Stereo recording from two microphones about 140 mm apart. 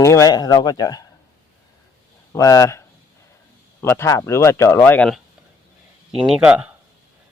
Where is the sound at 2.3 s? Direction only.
25° left (ahead or behind).